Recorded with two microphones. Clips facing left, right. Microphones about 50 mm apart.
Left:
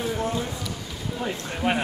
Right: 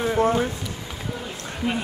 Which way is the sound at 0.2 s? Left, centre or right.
Right.